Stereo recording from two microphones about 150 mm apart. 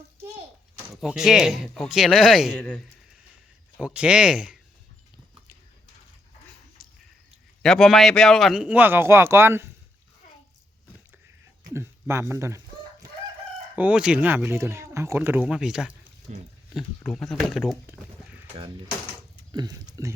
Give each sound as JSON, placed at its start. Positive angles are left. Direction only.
{"t": 1.0, "sound": "a man's voice", "side_deg": -5}
{"t": 3.8, "sound": "speech", "side_deg": -5}
{"t": 7.6, "sound": "speech", "side_deg": 0}
{"t": 11.7, "sound": "a sound", "side_deg": -15}
{"t": 13.7, "sound": "speech", "side_deg": -10}
{"t": 19.5, "sound": "speech", "side_deg": -25}